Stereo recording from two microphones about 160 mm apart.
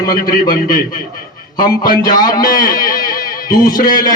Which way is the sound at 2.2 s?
25° left (ahead or behind).